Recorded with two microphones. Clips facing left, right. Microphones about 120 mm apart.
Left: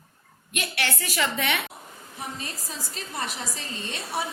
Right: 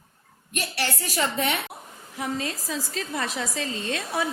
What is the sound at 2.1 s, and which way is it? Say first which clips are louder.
Speech: right 7 dB; 90° right.